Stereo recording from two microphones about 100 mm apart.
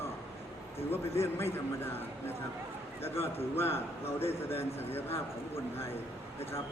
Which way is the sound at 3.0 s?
25° left (ahead or behind).